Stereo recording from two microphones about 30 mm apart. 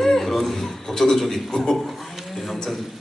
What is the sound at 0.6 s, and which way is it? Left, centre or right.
A man's voice, centre.